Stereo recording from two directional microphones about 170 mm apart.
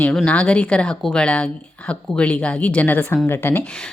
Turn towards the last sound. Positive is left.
turn(degrees=5)  # may be behind; listen again after turning